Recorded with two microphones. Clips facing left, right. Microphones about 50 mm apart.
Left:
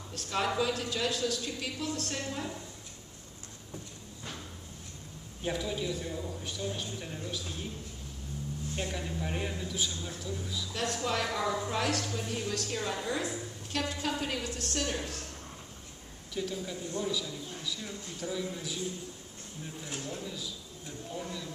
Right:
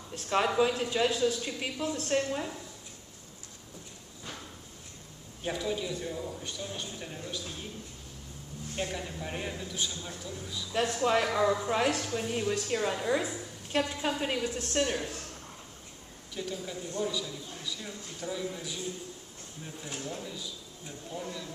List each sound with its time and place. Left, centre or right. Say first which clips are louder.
0.1 s a woman's voice: right 4 dB; right
5.4 s a man's voice: right 1 dB; centre
8.7 s a man's voice: right 2 dB; centre
10.7 s a woman's voice: right 6 dB; right
13.7 s a woman's voice: right 3 dB; right
16.3 s a man's voice: left 1 dB; centre
19.8 s a man's voice: right 1 dB; centre